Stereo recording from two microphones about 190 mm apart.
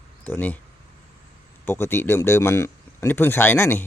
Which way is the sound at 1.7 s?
10° left (ahead or behind).